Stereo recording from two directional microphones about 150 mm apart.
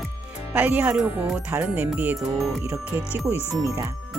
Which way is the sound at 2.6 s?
20° right (ahead or behind).